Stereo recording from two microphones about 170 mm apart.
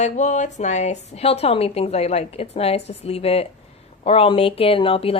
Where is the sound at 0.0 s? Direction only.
45° left (ahead or behind).